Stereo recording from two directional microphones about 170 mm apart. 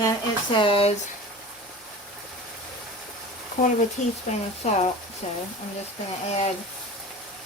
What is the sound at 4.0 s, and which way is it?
Speech, 40° left (ahead or behind).